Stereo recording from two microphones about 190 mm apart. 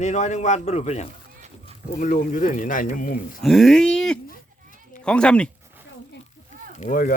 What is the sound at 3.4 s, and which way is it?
A man's voice, centre (ahead or behind).